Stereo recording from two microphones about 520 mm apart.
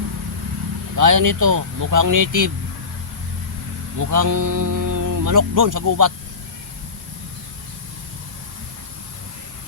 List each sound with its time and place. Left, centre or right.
0.9 s speech: right
3.9 s speech: right